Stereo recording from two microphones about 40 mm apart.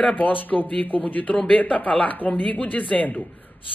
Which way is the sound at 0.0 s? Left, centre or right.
Left.